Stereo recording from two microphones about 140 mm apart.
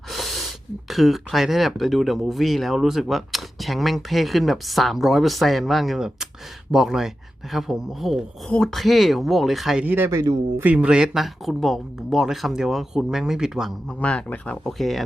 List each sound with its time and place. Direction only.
0.1 s a sound: centre (ahead or behind)
0.9 s speech: centre (ahead or behind)
9.8 s speech: 15° right (ahead or behind)
10.6 s speech: 10° right (ahead or behind)
14.0 s speech: 10° left (ahead or behind)